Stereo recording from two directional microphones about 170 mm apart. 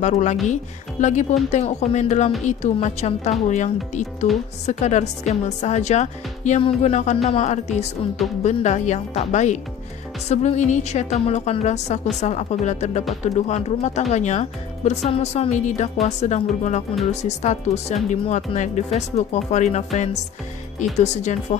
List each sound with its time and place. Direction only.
0.0 s a woman's voice: 45° left (ahead or behind)